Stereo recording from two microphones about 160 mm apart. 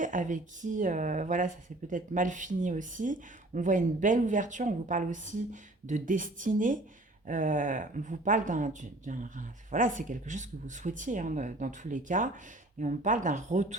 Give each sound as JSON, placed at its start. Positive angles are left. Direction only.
{"t": 0.0, "sound": "speech", "side_deg": -55}